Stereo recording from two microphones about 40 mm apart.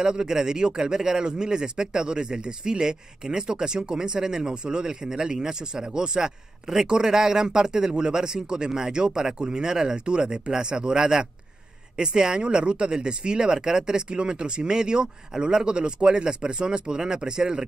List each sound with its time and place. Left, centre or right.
0.0 s speech: centre